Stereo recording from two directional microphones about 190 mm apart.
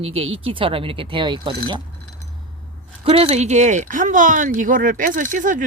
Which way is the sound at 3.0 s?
30° right (ahead or behind).